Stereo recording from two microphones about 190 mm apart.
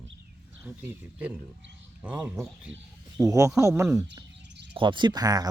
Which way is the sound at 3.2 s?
15° right (ahead or behind).